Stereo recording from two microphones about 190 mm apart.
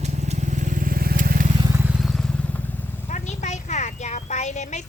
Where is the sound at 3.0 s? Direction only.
40° left (ahead or behind).